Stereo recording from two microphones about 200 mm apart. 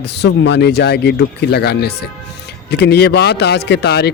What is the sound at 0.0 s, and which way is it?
Speech, 55° left (ahead or behind).